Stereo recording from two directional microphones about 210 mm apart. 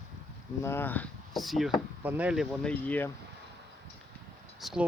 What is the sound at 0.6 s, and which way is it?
Speech, 10° left (ahead or behind).